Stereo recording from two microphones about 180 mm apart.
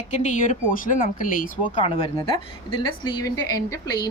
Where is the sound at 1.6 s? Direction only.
30° left (ahead or behind).